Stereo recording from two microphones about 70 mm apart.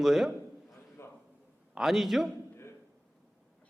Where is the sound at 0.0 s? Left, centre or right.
Centre.